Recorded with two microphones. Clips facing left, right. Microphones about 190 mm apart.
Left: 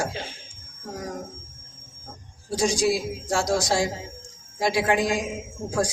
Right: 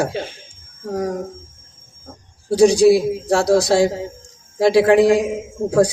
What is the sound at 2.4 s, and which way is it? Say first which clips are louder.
A man's voice: right 12 dB; 65° right (ahead or behind).